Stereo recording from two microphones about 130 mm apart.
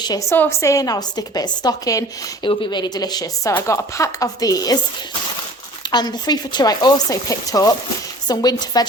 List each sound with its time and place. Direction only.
0.0 s speech: 30° left (ahead or behind)
0.3 s a woman's voice: 20° left (ahead or behind)
2.4 s a woman's voice: 35° left (ahead or behind)
5.9 s speech: 35° left (ahead or behind)